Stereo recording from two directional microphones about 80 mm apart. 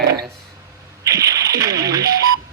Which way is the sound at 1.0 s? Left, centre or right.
Right.